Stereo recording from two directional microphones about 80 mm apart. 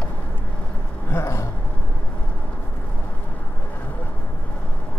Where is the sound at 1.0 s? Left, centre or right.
Left.